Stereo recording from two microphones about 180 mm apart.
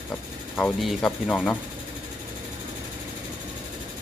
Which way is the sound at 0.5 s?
Centre (ahead or behind).